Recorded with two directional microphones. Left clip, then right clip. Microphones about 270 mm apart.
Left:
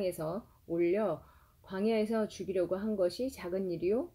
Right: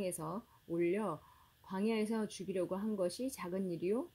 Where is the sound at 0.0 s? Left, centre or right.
Right.